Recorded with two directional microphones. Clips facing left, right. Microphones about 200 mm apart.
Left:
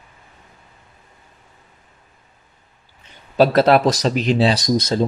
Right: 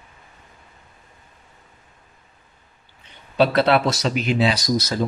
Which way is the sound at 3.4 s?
45° left (ahead or behind).